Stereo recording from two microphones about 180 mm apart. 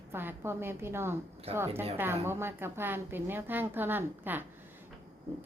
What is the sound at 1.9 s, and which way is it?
A woman's voice, 10° right (ahead or behind).